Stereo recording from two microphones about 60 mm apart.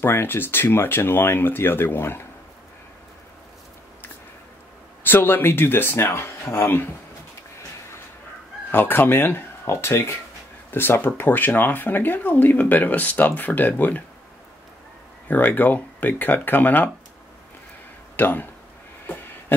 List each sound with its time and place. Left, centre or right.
0.0 s speech: left
5.0 s speech: left
8.7 s speech: left
9.7 s speech: left
15.2 s speech: left
18.1 s speech: left